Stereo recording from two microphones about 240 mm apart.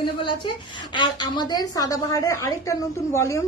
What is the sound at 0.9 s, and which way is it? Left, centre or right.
A woman's voice, centre.